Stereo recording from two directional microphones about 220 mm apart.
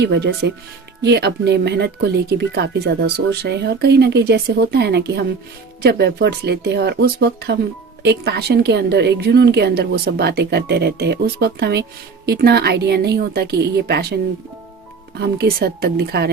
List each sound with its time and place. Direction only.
0.0 s speech: 50° right (ahead or behind)
15.2 s speech: 45° right (ahead or behind)